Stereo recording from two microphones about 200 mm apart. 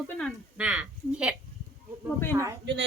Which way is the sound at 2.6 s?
60° right (ahead or behind).